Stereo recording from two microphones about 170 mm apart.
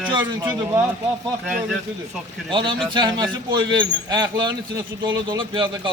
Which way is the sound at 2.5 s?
30° right (ahead or behind).